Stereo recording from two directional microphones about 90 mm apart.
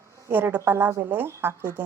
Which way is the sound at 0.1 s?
35° right (ahead or behind).